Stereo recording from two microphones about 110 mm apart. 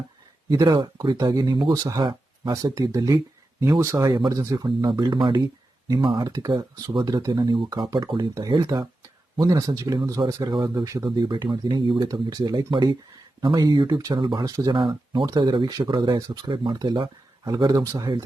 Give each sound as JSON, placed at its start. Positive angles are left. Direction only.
{"t": 0.5, "sound": "speech", "side_deg": -40}
{"t": 3.6, "sound": "speech", "side_deg": -25}
{"t": 4.5, "sound": "speech", "side_deg": -40}
{"t": 10.5, "sound": "speech", "side_deg": -45}
{"t": 14.4, "sound": "speech", "side_deg": -30}
{"t": 14.7, "sound": "speech", "side_deg": -45}